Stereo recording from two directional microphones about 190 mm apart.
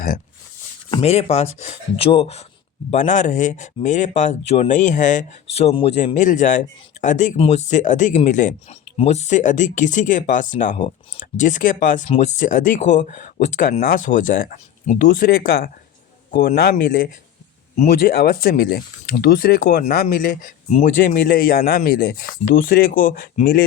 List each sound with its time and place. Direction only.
0.9 s speech: 35° left (ahead or behind); by 23.6 s 50° left (ahead or behind)